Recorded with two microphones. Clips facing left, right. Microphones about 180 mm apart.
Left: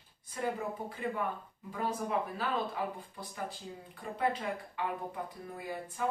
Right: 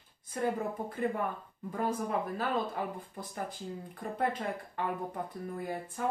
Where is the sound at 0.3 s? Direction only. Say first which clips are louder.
Right 3 dB; 45° right (ahead or behind).